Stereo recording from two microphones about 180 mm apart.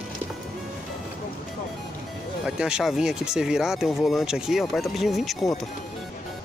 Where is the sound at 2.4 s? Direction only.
5° right (ahead or behind).